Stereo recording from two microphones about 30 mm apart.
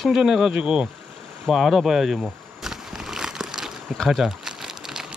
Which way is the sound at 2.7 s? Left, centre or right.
Centre.